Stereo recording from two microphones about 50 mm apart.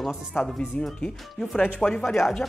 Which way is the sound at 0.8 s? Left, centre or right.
Left.